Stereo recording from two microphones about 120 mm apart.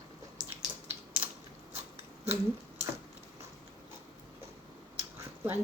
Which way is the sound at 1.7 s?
60° right (ahead or behind).